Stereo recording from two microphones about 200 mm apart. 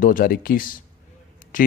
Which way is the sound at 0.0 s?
45° left (ahead or behind).